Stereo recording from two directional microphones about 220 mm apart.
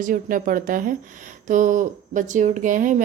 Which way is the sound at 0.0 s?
40° right (ahead or behind).